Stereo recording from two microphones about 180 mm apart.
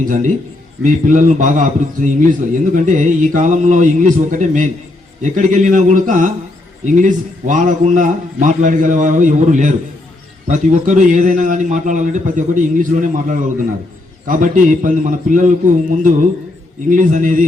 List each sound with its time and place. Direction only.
0.0 s a man's voice: 45° right (ahead or behind)